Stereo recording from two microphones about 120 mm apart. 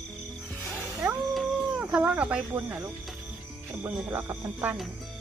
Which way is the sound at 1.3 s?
Centre (ahead or behind).